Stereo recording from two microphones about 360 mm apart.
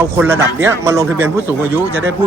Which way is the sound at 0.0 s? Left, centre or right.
Centre.